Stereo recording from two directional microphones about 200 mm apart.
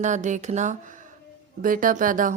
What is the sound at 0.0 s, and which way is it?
Speech, 35° right (ahead or behind).